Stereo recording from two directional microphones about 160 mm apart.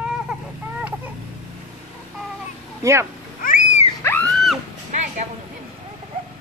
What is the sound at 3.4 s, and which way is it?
Wild animals, 60° left (ahead or behind).